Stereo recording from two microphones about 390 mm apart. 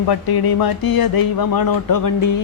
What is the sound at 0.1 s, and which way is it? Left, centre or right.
Speech, left.